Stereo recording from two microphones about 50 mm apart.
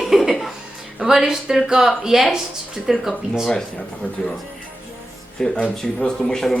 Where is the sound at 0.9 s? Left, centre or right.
Centre.